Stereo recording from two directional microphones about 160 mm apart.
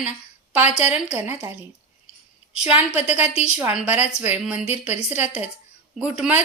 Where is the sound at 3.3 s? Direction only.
45° left (ahead or behind).